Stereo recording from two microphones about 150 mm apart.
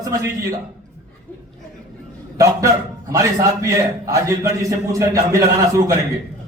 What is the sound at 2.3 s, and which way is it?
A man's voice, 20° right (ahead or behind).